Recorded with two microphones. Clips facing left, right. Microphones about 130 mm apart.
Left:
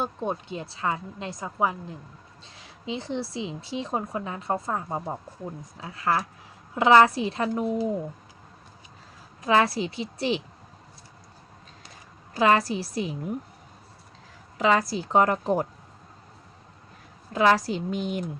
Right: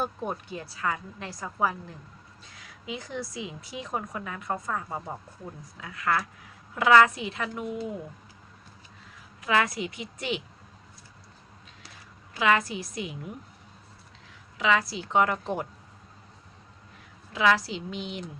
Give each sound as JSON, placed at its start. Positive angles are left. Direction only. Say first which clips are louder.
{"t": 0.0, "sound": "a woman's voice", "louder": "left 2 dB", "side_deg": 25}
{"t": 9.4, "sound": "a woman's voice", "louder": "left 4 dB", "side_deg": 30}
{"t": 12.3, "sound": "a woman's voice", "louder": "left 4 dB", "side_deg": 40}
{"t": 14.6, "sound": "a woman's voice", "louder": "left 3 dB", "side_deg": 40}
{"t": 17.3, "sound": "a woman's voice", "louder": "left 3 dB", "side_deg": 45}